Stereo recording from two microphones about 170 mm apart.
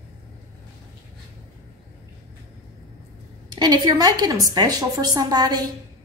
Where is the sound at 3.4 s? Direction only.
25° right (ahead or behind).